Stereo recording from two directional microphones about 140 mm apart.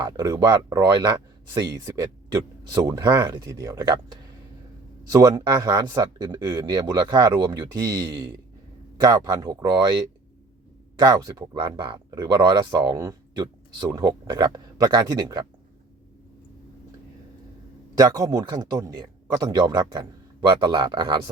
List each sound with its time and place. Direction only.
0.0 s speech: 30° right (ahead or behind)
11.0 s speech: 25° right (ahead or behind)
17.9 s speech: 25° right (ahead or behind)